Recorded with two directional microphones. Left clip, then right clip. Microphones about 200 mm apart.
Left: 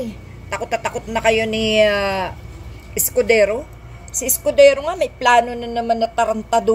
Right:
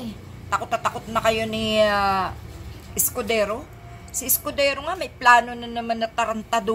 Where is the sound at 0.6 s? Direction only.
35° right (ahead or behind).